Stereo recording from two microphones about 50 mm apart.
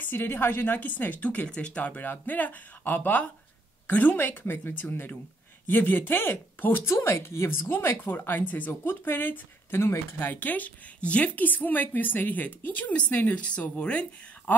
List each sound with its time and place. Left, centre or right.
0.0 s a woman's voice: left
2.0 s a woman's voice: left
8.0 s a woman's voice: left
10.1 s a woman's voice: left